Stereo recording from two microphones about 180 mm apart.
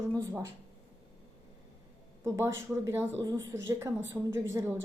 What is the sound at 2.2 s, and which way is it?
A woman's voice, 15° right (ahead or behind).